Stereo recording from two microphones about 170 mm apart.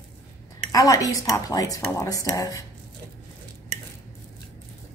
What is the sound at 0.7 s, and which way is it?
A woman's voice, 20° left (ahead or behind).